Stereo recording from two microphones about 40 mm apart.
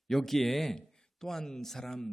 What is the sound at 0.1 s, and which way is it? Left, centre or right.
Speech, centre.